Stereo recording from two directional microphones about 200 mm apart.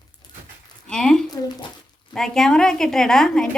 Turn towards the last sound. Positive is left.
turn(degrees=0)  # may be behind; listen again after turning